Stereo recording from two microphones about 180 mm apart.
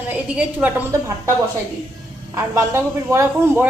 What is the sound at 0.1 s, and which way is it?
A man's voice, 10° right (ahead or behind).